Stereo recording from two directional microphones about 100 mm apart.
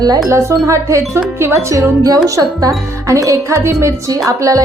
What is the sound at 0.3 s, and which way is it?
Speech, 30° right (ahead or behind).